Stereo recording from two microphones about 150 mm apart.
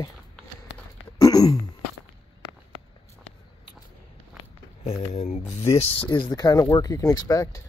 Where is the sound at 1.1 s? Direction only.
25° left (ahead or behind).